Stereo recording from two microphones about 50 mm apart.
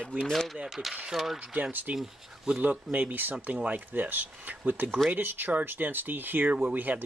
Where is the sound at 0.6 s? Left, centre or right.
Centre.